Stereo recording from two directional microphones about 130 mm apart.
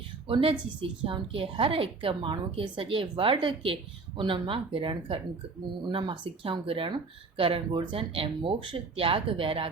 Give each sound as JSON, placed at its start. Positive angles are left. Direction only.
{"t": 0.3, "sound": "speech", "side_deg": -45}